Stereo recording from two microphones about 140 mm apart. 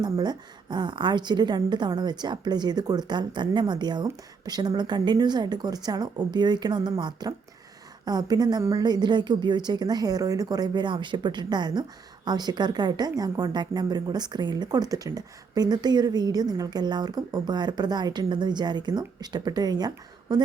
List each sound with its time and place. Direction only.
0.0 s a woman's voice: 30° right (ahead or behind)